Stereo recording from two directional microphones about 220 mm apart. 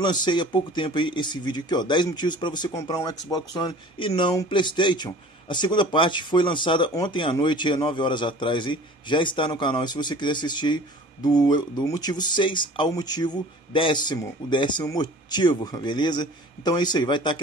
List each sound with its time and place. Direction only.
0.0 s speech: 20° left (ahead or behind)